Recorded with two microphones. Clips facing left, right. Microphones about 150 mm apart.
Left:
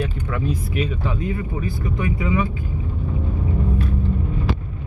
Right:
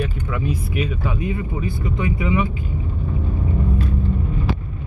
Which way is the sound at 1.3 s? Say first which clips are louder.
Right 1 dB; 20° right (ahead or behind).